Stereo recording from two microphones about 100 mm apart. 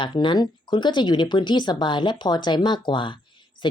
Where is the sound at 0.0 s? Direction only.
50° left (ahead or behind).